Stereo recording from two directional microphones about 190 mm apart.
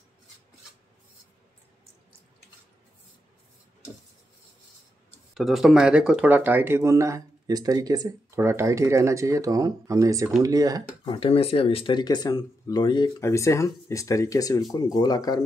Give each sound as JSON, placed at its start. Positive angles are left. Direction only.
{"t": 5.3, "sound": "speech", "side_deg": 0}
{"t": 11.1, "sound": "speech", "side_deg": 30}